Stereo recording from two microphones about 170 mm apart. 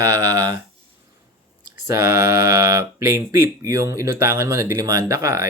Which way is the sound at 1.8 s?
15° right (ahead or behind).